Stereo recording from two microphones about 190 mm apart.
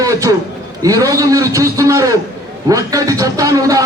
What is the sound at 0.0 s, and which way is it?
A man's voice, 15° right (ahead or behind).